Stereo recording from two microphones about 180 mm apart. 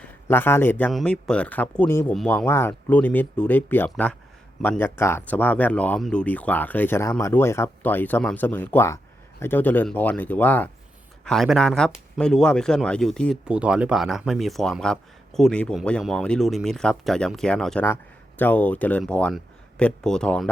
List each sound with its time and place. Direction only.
0.3 s speech: 10° left (ahead or behind)